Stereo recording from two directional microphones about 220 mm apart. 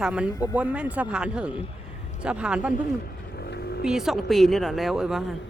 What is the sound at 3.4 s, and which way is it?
Vehicle, 45° left (ahead or behind).